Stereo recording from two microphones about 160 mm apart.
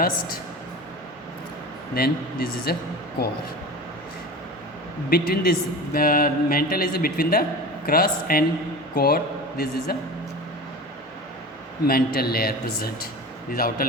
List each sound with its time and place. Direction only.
2.0 s a man's voice: 75° left (ahead or behind)
5.0 s a man's voice: 70° left (ahead or behind)
11.9 s a man's voice: 70° left (ahead or behind)